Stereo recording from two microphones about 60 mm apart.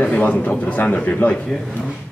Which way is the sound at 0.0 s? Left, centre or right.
Left.